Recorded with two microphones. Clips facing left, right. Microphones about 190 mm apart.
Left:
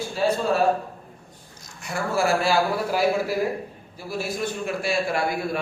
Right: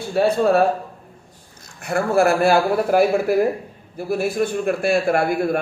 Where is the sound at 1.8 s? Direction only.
60° right (ahead or behind).